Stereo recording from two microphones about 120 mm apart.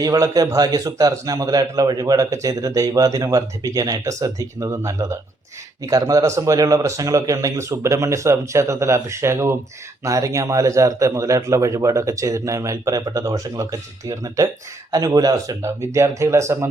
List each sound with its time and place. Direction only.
0.0 s a man's voice: 30° right (ahead or behind)